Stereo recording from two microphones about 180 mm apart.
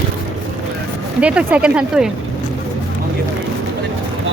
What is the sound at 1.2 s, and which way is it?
Speech, 5° right (ahead or behind).